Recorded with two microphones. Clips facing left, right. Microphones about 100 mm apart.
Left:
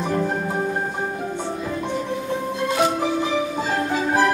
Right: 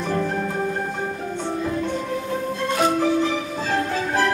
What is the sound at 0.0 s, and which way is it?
Music, 20° left (ahead or behind).